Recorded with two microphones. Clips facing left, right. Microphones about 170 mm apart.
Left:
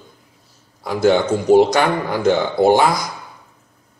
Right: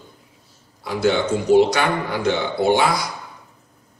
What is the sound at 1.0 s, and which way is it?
Speech, 45° left (ahead or behind).